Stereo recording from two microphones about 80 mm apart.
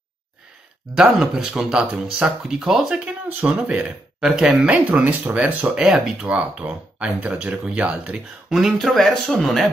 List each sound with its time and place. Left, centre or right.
0.9 s speech: centre
5.8 s speech: centre